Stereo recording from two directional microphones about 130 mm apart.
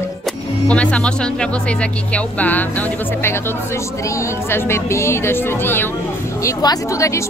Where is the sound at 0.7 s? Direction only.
10° left (ahead or behind).